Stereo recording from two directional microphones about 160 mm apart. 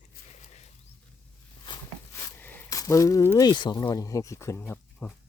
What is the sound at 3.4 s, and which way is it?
Speech, 25° left (ahead or behind).